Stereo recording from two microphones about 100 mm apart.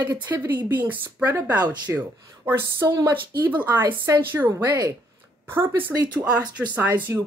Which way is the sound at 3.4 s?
15° right (ahead or behind).